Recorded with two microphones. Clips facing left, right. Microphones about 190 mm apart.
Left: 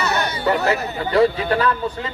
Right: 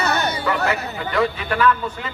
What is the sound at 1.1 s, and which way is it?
Speech, 35° left (ahead or behind).